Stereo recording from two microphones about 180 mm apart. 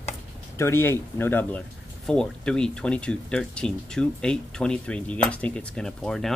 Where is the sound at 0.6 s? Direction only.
15° left (ahead or behind).